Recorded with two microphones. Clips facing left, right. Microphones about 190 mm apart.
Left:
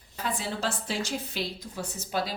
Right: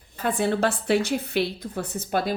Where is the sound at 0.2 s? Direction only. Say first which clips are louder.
Right 9 dB; 55° right (ahead or behind).